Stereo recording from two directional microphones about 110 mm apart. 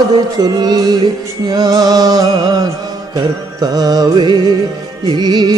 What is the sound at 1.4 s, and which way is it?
Music, 35° right (ahead or behind).